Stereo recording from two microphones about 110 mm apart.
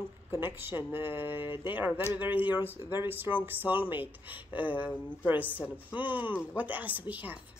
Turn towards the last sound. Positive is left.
turn(degrees=-15)  # may be behind; listen again after turning